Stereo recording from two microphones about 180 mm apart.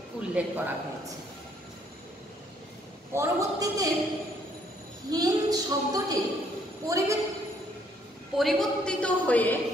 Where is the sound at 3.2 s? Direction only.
20° right (ahead or behind).